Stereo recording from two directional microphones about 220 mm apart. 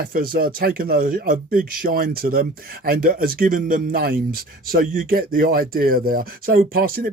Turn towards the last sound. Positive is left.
turn(degrees=-45)  # may be behind; listen again after turning